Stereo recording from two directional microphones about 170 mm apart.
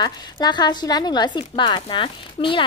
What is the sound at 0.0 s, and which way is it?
A woman's voice, 25° left (ahead or behind).